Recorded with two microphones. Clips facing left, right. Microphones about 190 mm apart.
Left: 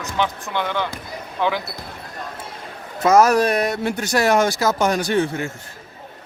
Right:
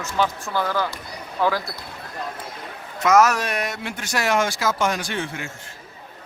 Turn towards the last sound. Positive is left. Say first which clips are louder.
# left 9 dB
turn(degrees=40)  # may be behind; listen again after turning